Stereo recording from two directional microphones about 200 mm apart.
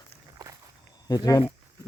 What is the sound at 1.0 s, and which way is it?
Speech, 20° left (ahead or behind).